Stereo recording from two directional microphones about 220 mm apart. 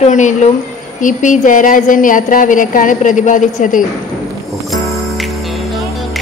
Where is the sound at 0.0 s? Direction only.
30° left (ahead or behind).